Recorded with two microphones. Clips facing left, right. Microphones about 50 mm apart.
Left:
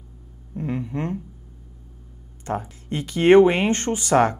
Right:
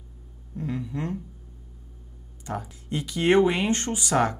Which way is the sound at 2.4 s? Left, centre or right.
Left.